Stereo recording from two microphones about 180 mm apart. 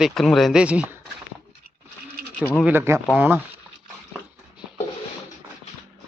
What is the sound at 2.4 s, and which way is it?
Speech, 10° left (ahead or behind).